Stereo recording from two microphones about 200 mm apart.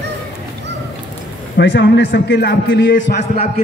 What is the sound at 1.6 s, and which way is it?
A man's voice, 60° left (ahead or behind).